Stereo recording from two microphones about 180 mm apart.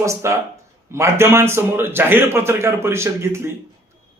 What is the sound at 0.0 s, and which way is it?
A man's voice, 15° right (ahead or behind).